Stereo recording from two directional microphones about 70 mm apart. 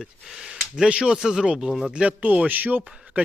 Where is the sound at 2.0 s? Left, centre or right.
Centre.